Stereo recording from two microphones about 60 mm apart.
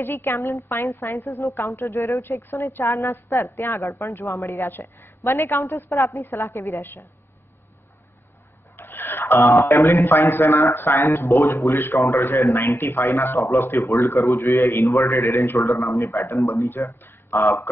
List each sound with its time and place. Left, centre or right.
0.0 s a woman's voice: left
4.6 s a man's voice: left
8.7 s a sound: left
9.5 s a man's voice: left
13.8 s a man's voice: left